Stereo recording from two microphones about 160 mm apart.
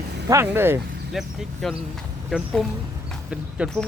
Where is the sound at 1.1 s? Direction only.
Centre (ahead or behind).